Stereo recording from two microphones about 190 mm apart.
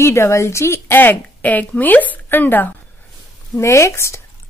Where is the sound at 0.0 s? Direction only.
15° left (ahead or behind).